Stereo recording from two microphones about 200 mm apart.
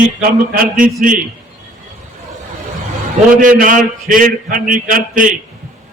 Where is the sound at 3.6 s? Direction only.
45° right (ahead or behind).